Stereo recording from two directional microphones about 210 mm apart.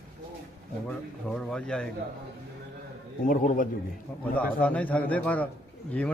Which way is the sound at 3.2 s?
40° left (ahead or behind).